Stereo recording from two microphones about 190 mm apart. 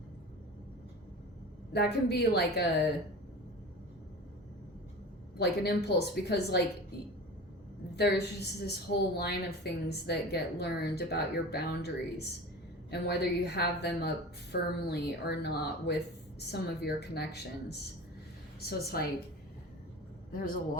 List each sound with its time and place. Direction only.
1.7 s a woman's voice: 60° left (ahead or behind)
5.4 s a woman's voice: 60° left (ahead or behind)
7.9 s a woman's voice: 60° left (ahead or behind)
20.3 s a man's voice: 45° left (ahead or behind)